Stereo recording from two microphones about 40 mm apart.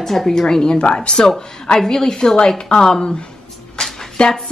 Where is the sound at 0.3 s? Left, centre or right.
Centre.